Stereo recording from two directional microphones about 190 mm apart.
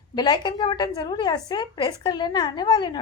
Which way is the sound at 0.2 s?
20° left (ahead or behind).